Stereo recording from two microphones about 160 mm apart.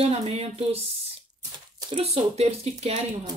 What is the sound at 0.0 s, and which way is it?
Speech, 40° right (ahead or behind).